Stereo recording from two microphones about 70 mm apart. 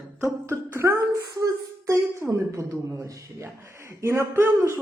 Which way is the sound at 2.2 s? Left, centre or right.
Right.